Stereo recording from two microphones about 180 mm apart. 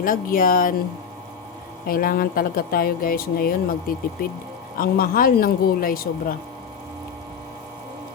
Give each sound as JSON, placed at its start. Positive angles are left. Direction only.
{"t": 0.0, "sound": "speech", "side_deg": 50}
{"t": 1.9, "sound": "speech", "side_deg": 55}